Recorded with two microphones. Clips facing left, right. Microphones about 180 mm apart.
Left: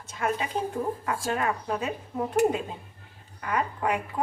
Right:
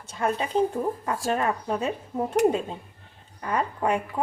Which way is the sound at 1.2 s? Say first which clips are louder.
Right 3 dB; 30° right (ahead or behind).